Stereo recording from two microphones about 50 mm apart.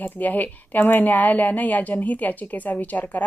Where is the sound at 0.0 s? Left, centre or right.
Left.